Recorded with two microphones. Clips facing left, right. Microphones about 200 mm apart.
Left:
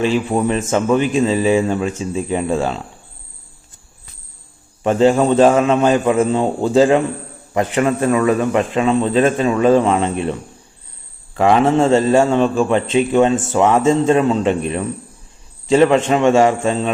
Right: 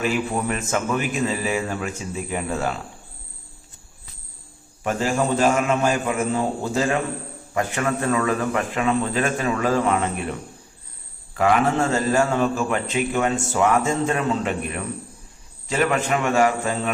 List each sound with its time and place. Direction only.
0.0 s a man's voice: 25° left (ahead or behind)
4.9 s a man's voice: 25° left (ahead or behind)
7.5 s a man's voice: 20° left (ahead or behind)
11.3 s a man's voice: 25° left (ahead or behind)